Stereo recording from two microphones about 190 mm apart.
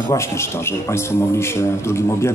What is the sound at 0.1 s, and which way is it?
Speech, 15° left (ahead or behind).